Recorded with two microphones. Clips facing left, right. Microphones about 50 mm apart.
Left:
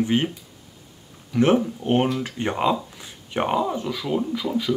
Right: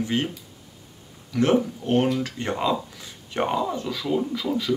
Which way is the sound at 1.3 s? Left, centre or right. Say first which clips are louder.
Left 2 dB; left.